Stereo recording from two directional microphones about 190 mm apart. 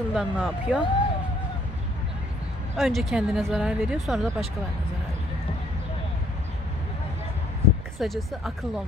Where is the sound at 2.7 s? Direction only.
Centre (ahead or behind).